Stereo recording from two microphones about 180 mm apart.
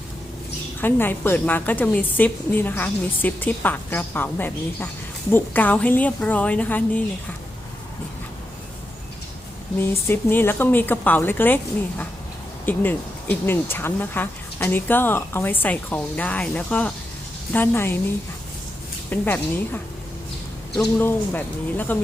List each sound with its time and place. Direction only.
0.8 s speech: 10° left (ahead or behind)
9.7 s speech: 10° left (ahead or behind)
19.1 s speech: 10° left (ahead or behind)